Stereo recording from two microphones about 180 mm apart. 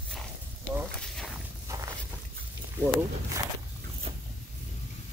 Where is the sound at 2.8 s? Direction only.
20° right (ahead or behind).